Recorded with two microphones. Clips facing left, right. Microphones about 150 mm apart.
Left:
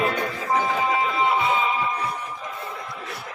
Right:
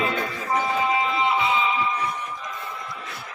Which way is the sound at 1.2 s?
45° left (ahead or behind).